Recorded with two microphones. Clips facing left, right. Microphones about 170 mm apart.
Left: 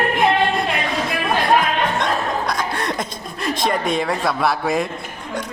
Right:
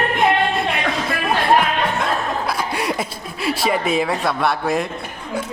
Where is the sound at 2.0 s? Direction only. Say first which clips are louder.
Even; 5° right (ahead or behind).